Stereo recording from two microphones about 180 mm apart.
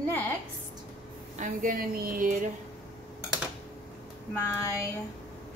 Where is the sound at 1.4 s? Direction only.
45° right (ahead or behind).